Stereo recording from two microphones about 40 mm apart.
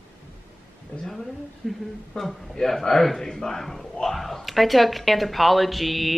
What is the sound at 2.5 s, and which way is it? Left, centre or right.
Speech, centre.